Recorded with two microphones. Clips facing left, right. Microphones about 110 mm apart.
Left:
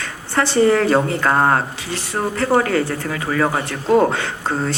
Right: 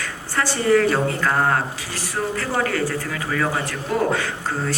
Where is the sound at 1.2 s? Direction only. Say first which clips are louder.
Left 4 dB; 45° left (ahead or behind).